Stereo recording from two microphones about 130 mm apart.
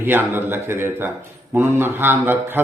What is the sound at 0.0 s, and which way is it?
A man's voice, 15° right (ahead or behind).